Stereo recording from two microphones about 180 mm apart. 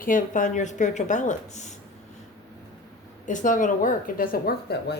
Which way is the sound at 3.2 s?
45° left (ahead or behind).